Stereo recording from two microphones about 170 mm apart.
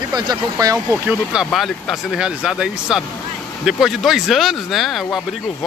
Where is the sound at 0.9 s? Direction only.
5° right (ahead or behind).